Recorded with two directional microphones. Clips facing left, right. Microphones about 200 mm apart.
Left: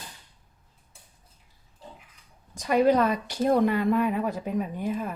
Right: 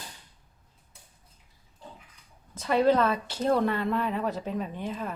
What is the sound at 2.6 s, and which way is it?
Speech, 15° left (ahead or behind).